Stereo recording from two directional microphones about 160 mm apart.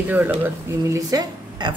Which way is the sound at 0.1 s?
10° right (ahead or behind).